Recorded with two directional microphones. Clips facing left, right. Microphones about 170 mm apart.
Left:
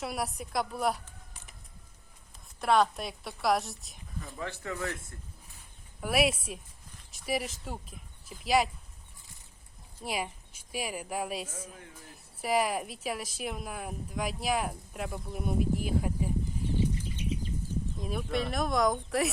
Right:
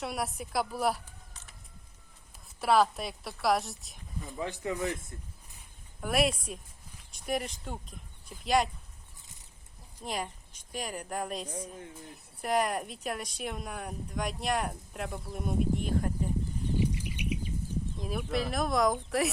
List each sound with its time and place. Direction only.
0.0 s speech: centre (ahead or behind)
2.6 s speech: 5° right (ahead or behind)
4.4 s speech: 15° right (ahead or behind)
6.0 s speech: 5° left (ahead or behind)
10.0 s speech: 5° left (ahead or behind)
16.8 s bird flight: 15° right (ahead or behind)
17.9 s speech: centre (ahead or behind)